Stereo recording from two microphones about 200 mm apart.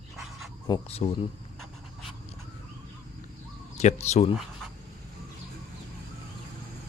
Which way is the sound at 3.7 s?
35° left (ahead or behind).